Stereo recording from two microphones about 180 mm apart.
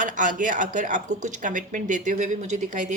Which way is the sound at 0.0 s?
45° right (ahead or behind).